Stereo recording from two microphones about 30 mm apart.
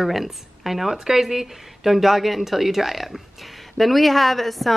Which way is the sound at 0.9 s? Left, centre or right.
Right.